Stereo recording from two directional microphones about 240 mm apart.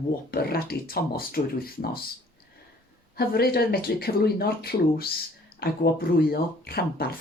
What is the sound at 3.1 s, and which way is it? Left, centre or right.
Speech, left.